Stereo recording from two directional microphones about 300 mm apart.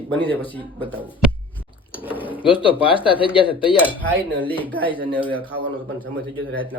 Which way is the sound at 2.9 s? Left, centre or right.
Centre.